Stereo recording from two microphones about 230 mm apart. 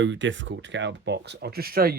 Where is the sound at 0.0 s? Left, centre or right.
Right.